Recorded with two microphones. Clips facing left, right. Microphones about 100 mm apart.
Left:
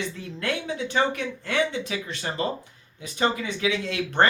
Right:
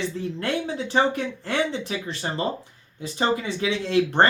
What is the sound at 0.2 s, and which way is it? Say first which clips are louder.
Speech: right 3 dB; 30° right (ahead or behind).